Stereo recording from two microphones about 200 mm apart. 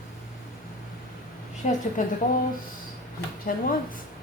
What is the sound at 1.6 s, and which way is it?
Speech, 35° left (ahead or behind).